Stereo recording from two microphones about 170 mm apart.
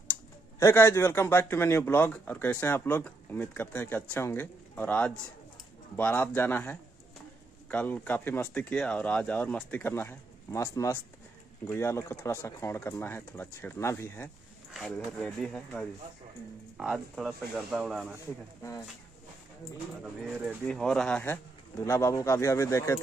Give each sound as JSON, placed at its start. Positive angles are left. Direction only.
{"t": 0.6, "sound": "speech", "side_deg": 15}
{"t": 14.7, "sound": "speech", "side_deg": 0}
{"t": 18.6, "sound": "speech", "side_deg": 20}
{"t": 20.0, "sound": "speech", "side_deg": -5}